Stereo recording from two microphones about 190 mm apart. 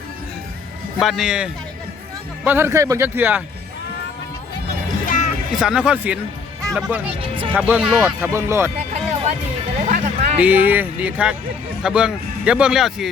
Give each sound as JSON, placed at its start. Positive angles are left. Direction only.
{"t": 0.9, "sound": "a man's voice", "side_deg": 0}
{"t": 5.0, "sound": "music", "side_deg": 40}
{"t": 5.5, "sound": "a man's voice", "side_deg": -5}
{"t": 7.1, "sound": "speech", "side_deg": -30}
{"t": 7.5, "sound": "speech", "side_deg": -10}
{"t": 9.8, "sound": "music", "side_deg": -40}
{"t": 10.3, "sound": "a man's voice", "side_deg": -10}